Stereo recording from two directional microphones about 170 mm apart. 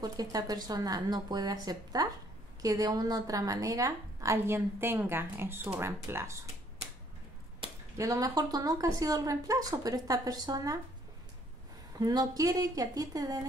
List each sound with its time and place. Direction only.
0.0 s a woman's voice: 20° right (ahead or behind)
7.6 s a sound: 30° right (ahead or behind)
8.0 s a woman's voice: 20° right (ahead or behind)
12.0 s a woman's voice: 25° right (ahead or behind)